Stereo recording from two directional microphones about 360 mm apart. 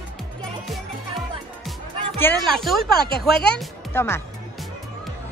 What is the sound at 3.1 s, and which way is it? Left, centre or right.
Speech, left.